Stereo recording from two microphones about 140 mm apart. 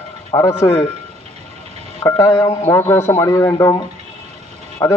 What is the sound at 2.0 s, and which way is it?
A man's voice, 25° left (ahead or behind).